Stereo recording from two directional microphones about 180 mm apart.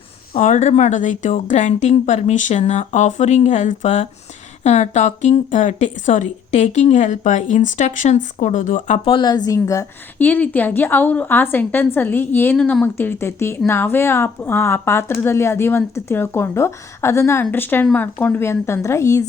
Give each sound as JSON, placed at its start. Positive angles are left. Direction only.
{"t": 0.3, "sound": "a woman's voice", "side_deg": 40}
{"t": 9.0, "sound": "a woman's voice", "side_deg": 25}